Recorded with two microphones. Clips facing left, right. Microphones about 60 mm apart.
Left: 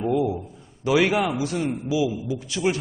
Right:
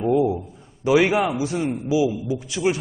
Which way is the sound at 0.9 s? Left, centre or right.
Centre.